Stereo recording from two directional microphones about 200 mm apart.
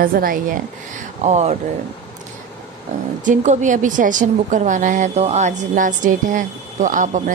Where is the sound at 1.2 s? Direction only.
35° right (ahead or behind).